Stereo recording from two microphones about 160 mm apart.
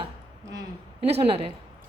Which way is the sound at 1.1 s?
40° right (ahead or behind).